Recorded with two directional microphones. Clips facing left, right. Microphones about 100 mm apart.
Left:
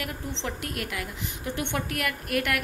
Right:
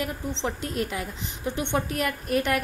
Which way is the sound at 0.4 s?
25° right (ahead or behind).